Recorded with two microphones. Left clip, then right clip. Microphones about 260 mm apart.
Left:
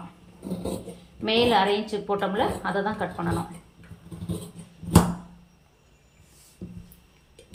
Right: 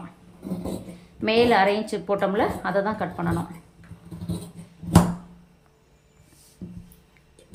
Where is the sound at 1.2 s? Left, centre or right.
Centre.